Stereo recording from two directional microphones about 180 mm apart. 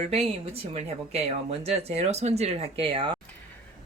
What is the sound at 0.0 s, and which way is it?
Speech, 35° right (ahead or behind).